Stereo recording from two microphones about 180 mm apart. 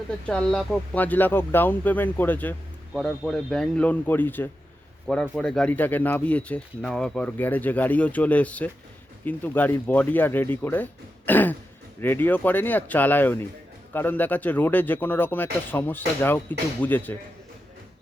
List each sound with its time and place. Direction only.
0.3 s a man's voice: 5° left (ahead or behind)